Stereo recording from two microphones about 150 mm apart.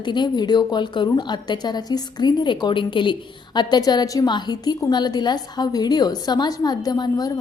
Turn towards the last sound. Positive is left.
turn(degrees=25)  # may be behind; listen again after turning